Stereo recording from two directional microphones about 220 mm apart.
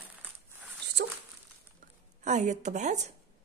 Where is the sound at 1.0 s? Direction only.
50° right (ahead or behind).